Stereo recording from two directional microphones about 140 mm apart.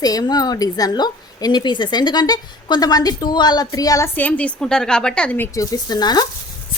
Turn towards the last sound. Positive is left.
turn(degrees=30)  # may be behind; listen again after turning